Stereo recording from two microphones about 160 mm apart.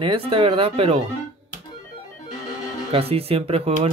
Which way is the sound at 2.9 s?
35° right (ahead or behind).